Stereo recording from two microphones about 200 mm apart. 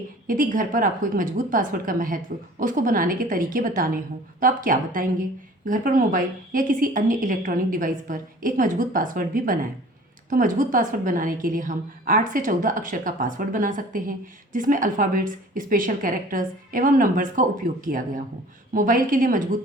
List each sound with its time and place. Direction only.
0.3 s a woman's voice: 45° right (ahead or behind)